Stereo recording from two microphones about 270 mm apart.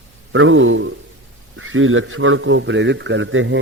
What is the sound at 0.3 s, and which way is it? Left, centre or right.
A man's voice, right.